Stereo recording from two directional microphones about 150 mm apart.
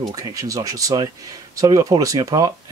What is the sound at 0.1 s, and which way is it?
Speech, 25° right (ahead or behind).